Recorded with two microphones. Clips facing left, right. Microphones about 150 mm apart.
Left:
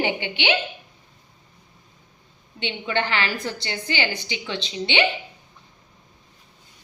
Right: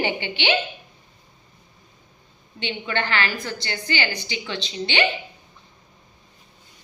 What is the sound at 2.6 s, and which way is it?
A woman's voice, 20° left (ahead or behind).